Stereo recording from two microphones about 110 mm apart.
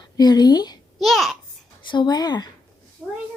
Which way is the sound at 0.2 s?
40° left (ahead or behind).